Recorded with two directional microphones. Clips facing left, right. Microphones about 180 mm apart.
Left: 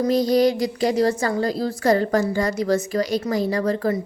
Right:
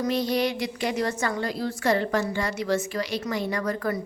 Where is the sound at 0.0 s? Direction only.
40° left (ahead or behind).